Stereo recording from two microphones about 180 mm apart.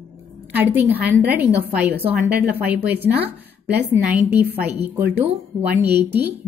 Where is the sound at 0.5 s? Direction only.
10° right (ahead or behind).